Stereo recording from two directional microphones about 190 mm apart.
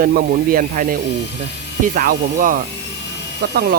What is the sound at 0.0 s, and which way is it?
Speech, 55° right (ahead or behind).